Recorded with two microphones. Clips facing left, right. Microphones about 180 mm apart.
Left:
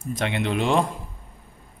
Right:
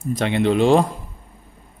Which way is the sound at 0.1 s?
30° right (ahead or behind).